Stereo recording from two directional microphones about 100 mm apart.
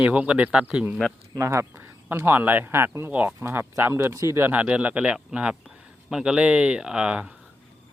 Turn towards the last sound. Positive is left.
turn(degrees=-10)  # may be behind; listen again after turning